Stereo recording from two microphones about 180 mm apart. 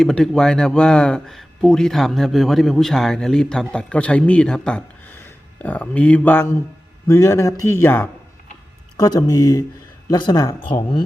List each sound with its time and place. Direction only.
0.0 s speech: 5° left (ahead or behind)
9.0 s speech: 20° left (ahead or behind)